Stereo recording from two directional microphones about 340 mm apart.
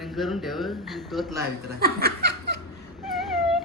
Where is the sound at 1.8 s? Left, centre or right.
Right.